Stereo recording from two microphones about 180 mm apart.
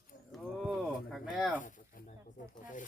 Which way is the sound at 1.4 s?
Centre (ahead or behind).